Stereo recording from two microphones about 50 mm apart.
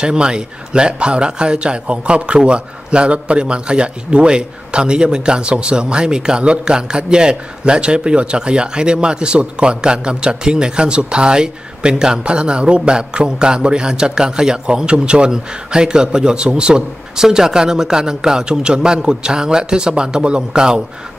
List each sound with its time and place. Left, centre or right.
0.0 s speech: centre